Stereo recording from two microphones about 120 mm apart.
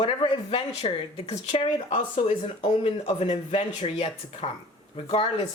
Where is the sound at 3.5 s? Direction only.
50° left (ahead or behind).